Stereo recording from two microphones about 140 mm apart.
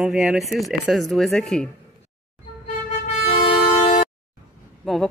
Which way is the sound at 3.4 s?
50° left (ahead or behind).